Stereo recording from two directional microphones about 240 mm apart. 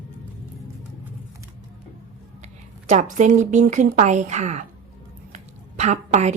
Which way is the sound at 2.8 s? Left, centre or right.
Right.